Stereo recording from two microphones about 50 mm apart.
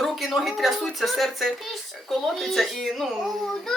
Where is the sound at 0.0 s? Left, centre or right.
Centre.